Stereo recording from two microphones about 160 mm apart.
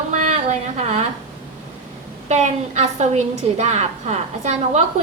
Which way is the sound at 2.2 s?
45° right (ahead or behind).